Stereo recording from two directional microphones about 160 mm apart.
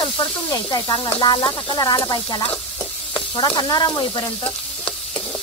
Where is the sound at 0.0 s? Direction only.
30° left (ahead or behind).